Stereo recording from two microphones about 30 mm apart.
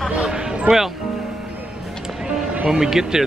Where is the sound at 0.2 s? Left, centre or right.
Right.